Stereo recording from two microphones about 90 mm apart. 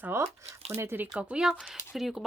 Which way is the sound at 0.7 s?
25° right (ahead or behind).